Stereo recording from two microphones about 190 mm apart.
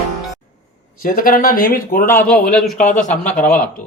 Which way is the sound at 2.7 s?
40° left (ahead or behind).